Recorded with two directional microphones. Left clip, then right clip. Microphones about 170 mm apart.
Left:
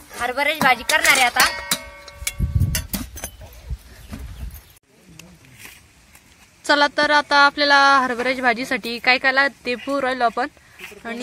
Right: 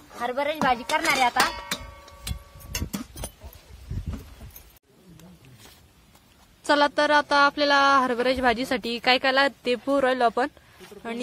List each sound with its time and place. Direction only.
0.2 s a woman's voice: centre (ahead or behind)
1.5 s a sound: 35° left (ahead or behind)
6.6 s speech: 10° right (ahead or behind)